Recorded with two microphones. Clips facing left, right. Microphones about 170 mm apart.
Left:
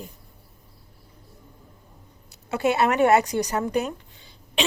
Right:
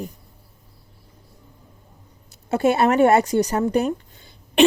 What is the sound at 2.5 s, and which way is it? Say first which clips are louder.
Speech: right 4 dB; 50° right (ahead or behind).